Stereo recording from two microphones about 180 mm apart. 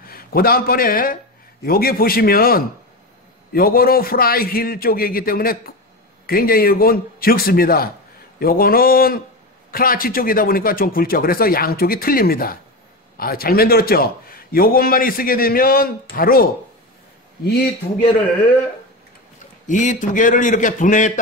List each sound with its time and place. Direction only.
0.0 s a man's voice: 55° left (ahead or behind)
19.6 s speech: 45° left (ahead or behind)